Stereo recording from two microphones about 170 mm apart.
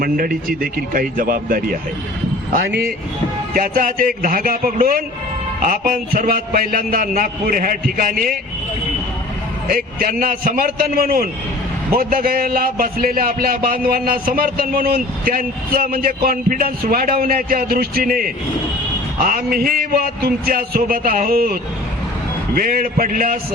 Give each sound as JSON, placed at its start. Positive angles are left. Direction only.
{"t": 0.0, "sound": "a man's voice", "side_deg": -55}
{"t": 2.6, "sound": "speech", "side_deg": -75}
{"t": 3.5, "sound": "a man's voice", "side_deg": -55}
{"t": 9.6, "sound": "a man's voice", "side_deg": -55}